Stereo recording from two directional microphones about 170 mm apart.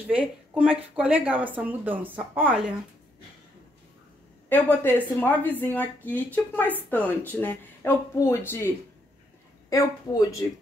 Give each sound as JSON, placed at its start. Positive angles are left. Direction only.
{"t": 0.1, "sound": "speech", "side_deg": -5}
{"t": 4.5, "sound": "speech", "side_deg": 10}